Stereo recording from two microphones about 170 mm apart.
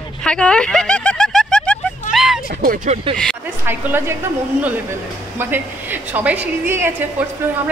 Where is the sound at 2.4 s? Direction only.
60° right (ahead or behind).